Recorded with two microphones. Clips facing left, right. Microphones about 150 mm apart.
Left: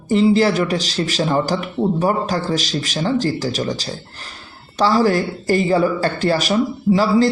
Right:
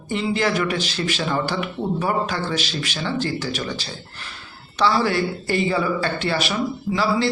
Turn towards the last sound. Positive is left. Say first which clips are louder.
# left 7 dB
turn(degrees=40)  # may be behind; listen again after turning